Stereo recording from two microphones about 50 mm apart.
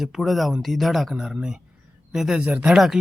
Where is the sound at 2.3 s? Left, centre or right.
Right.